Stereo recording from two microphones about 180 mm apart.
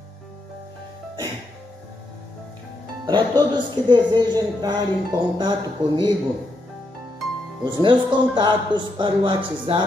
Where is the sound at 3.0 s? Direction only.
25° right (ahead or behind).